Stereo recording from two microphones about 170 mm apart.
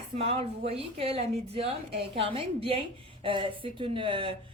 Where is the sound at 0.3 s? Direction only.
35° right (ahead or behind).